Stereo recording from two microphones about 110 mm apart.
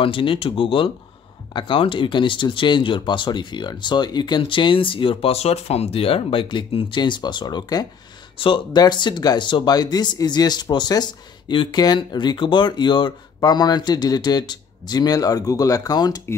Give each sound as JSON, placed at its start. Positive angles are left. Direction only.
{"t": 0.0, "sound": "speech", "side_deg": 50}
{"t": 8.4, "sound": "speech", "side_deg": 55}
{"t": 8.7, "sound": "speech", "side_deg": 40}